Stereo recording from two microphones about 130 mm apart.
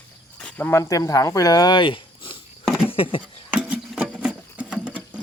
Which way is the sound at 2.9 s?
45° left (ahead or behind).